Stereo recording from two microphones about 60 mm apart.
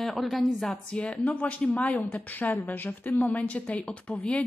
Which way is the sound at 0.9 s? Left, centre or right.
Centre.